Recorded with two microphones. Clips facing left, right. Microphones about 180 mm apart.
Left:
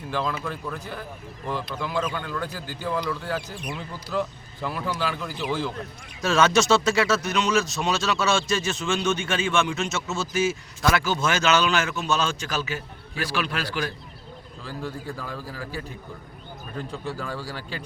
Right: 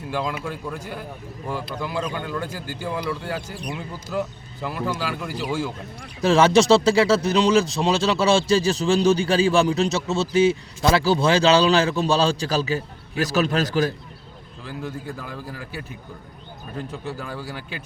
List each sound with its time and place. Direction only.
0.1 s a man's voice: 10° right (ahead or behind)
2.5 s speech: 50° right (ahead or behind)
2.8 s a man's voice: 10° right (ahead or behind)
6.0 s speech: 30° right (ahead or behind)
14.8 s speech: 5° right (ahead or behind)
16.9 s speech: 5° right (ahead or behind)